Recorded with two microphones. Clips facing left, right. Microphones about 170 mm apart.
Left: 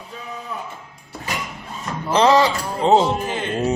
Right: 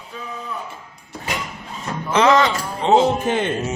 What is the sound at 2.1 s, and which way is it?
Speech, 35° left (ahead or behind).